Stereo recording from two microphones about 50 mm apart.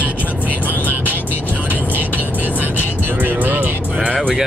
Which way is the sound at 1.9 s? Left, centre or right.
Right.